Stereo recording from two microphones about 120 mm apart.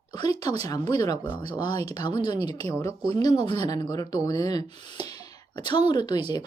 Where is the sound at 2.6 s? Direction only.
30° left (ahead or behind).